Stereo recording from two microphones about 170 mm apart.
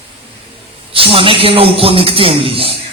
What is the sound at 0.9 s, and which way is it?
A man's voice, 30° right (ahead or behind).